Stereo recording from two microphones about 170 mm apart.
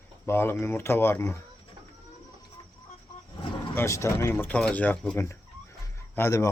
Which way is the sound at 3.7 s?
15° left (ahead or behind).